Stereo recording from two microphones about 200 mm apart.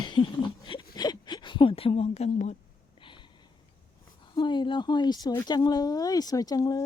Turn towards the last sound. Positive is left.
turn(degrees=15)  # may be behind; listen again after turning